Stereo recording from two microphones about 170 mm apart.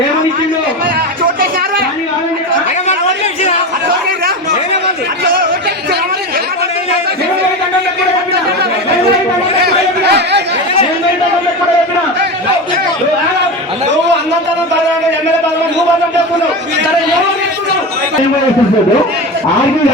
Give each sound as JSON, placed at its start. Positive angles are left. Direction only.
{"t": 9.6, "sound": "chatter", "side_deg": -75}